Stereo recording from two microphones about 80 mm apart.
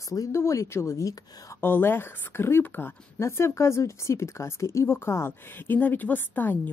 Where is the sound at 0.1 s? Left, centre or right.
Left.